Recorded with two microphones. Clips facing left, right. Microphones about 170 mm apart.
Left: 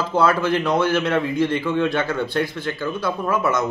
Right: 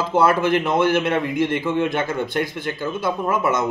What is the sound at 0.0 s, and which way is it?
A man's voice, 20° right (ahead or behind).